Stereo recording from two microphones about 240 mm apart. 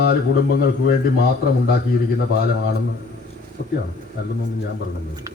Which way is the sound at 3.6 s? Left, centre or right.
Left.